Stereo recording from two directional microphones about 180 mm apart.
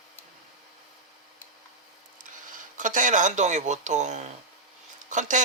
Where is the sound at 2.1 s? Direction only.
45° right (ahead or behind).